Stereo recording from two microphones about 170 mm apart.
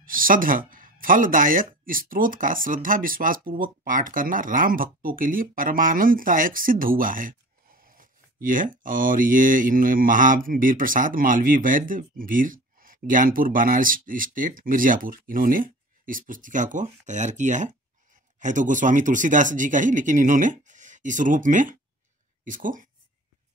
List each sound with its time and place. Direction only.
0.0 s speech: 55° right (ahead or behind)